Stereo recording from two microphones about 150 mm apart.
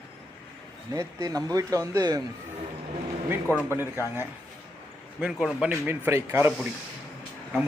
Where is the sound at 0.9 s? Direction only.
20° right (ahead or behind).